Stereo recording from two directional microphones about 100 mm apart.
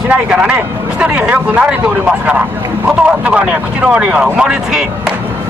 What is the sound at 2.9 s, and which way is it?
Speech, 10° right (ahead or behind).